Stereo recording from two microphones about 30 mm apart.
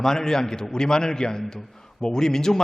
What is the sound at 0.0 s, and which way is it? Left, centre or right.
A man's voice, centre.